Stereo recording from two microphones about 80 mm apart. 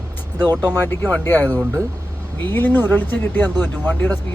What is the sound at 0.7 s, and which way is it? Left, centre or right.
Speech, left.